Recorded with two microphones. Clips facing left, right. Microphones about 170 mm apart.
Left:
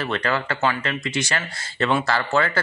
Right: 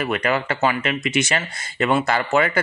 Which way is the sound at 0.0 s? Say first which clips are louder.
Right 3 dB; 15° right (ahead or behind).